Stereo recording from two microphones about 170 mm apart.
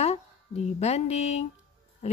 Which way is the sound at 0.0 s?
40° left (ahead or behind).